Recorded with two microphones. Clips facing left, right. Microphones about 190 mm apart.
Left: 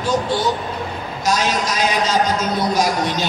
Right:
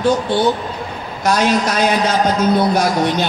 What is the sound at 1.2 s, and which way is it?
A man's voice, 60° right (ahead or behind).